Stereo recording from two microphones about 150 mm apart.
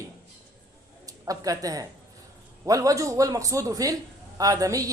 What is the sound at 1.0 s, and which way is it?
A woman's voice, 25° right (ahead or behind).